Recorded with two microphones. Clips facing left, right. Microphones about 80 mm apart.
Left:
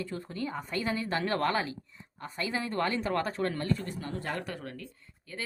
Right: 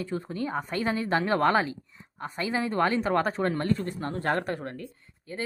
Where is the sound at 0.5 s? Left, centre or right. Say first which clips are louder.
Right 4 dB; right.